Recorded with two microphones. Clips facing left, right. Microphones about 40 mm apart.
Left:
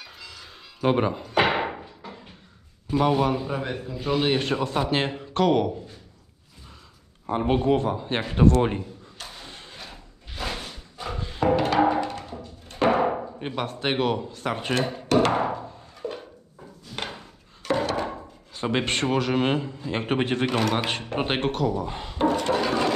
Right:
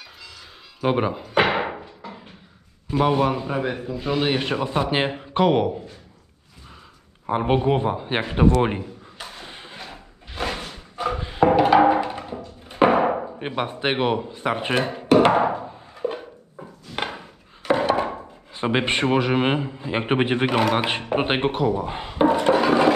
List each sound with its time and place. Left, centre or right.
0.0 s music: centre
2.0 s a sound: centre
2.9 s speech: centre
4.4 s speech: centre
7.2 s speech: centre
8.5 s a sound: centre
11.8 s music: centre
12.6 s a sound: right
17.6 s speech: centre